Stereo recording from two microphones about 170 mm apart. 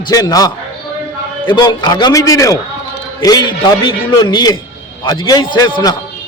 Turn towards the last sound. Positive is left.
turn(degrees=25)  # may be behind; listen again after turning